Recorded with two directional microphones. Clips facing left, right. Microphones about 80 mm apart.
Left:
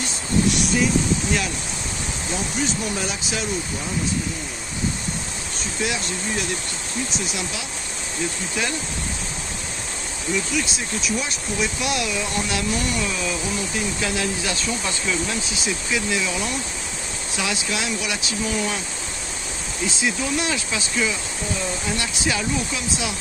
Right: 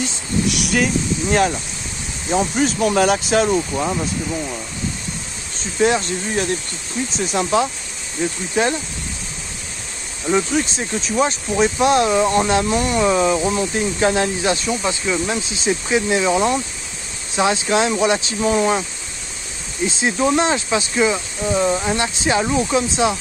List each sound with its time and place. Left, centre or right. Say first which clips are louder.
0.5 s vehicle: right 4 dB; right
2.3 s speech: right 8 dB; right
2.9 s speech: right 11 dB; right
5.8 s speech: right 10 dB; right
7.5 s speech: right 13 dB; right
10.3 s speech: right 7 dB; right
19.9 s speech: right 7 dB; right
21.5 s speech: right 11 dB; right
21.9 s speech: right 6 dB; right